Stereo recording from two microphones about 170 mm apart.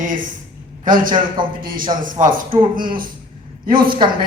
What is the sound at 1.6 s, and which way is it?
A man's voice, 55° right (ahead or behind).